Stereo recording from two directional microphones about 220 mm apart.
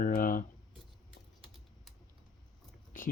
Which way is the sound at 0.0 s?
40° left (ahead or behind).